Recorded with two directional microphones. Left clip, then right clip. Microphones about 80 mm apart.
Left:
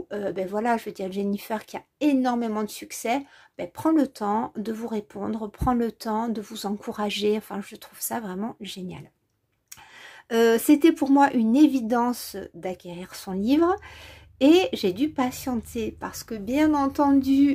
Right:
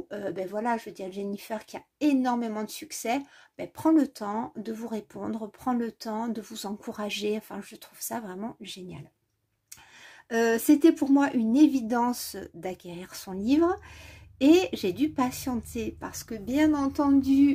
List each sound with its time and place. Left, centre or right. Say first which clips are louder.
0.1 s speech: left 5 dB; left
0.5 s a woman's voice: left 4 dB; left
0.7 s speech: left 5 dB; left
1.7 s a woman's voice: left 2 dB; left
5.6 s speech: left 6 dB; left
5.9 s speech: left 6 dB; left
6.1 s a woman's voice: left 5 dB; left
10.3 s a woman's voice: left 4 dB; left